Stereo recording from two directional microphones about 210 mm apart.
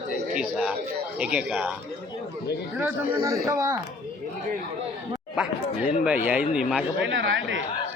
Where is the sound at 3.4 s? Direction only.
15° right (ahead or behind).